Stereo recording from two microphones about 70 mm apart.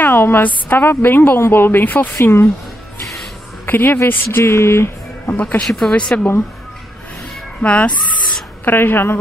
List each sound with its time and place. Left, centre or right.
0.0 s a woman's voice: left
2.1 s speech: left
3.6 s speech: left
5.3 s a woman's voice: left
5.6 s speech: centre
7.6 s speech: centre
8.6 s speech: left